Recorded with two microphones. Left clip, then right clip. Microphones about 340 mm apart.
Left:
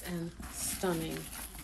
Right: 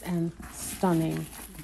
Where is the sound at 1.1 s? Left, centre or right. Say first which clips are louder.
Right 5 dB; centre.